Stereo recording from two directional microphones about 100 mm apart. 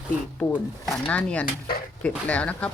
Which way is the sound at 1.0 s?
15° left (ahead or behind).